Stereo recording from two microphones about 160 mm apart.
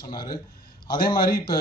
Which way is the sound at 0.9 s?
65° left (ahead or behind).